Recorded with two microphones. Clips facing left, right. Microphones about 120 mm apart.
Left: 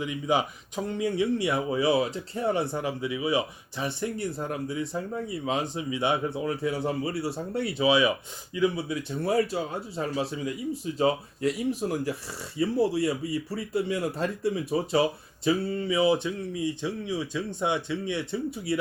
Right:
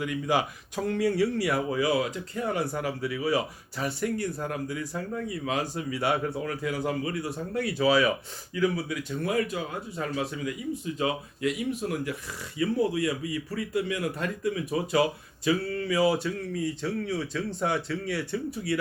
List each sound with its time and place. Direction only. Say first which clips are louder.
1.0 s speech: even; 20° left (ahead or behind)